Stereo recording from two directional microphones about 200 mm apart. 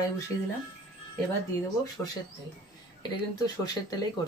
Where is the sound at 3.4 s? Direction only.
20° left (ahead or behind).